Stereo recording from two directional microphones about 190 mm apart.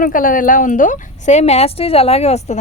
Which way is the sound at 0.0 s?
45° left (ahead or behind).